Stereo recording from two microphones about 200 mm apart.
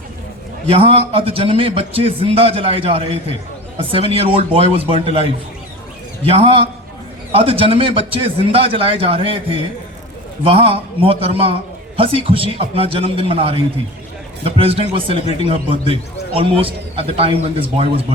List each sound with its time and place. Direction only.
0.7 s a man's voice: 25° right (ahead or behind)